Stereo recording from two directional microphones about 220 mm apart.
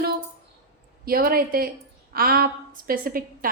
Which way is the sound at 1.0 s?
40° right (ahead or behind).